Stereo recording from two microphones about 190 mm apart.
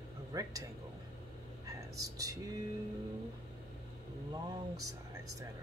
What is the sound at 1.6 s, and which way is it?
Whispering, 20° right (ahead or behind).